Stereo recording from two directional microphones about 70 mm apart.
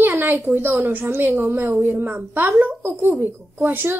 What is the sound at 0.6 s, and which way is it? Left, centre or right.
A woman's voice, right.